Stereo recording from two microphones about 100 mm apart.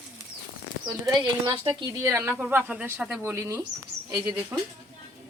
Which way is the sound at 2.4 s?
15° right (ahead or behind).